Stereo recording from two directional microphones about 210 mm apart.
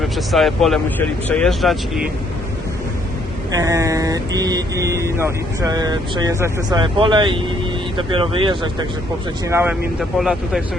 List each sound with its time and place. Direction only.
0.0 s speech: centre (ahead or behind)
3.5 s speech: 15° right (ahead or behind)
9.5 s speech: 10° right (ahead or behind)
10.0 s speech: centre (ahead or behind)